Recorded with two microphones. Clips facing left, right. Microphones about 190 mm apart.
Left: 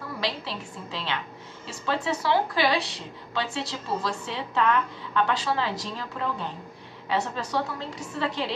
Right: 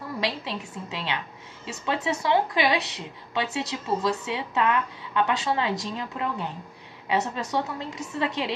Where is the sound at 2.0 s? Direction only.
20° right (ahead or behind).